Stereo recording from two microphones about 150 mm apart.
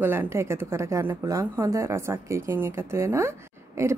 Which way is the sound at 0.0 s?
15° right (ahead or behind).